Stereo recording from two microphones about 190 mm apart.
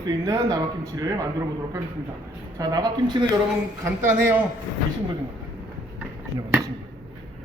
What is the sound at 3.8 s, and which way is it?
Speech, 10° right (ahead or behind).